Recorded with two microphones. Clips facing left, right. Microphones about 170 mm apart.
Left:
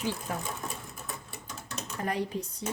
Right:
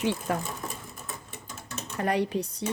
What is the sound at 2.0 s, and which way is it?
Speech, 70° right (ahead or behind).